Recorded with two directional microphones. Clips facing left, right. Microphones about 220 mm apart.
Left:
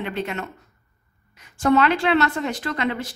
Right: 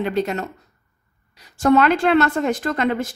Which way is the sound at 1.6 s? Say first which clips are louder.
Right 3 dB; 45° right (ahead or behind).